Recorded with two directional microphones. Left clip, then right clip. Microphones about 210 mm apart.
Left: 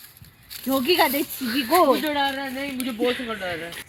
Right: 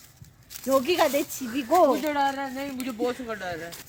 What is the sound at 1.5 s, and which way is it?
Speech, 15° right (ahead or behind).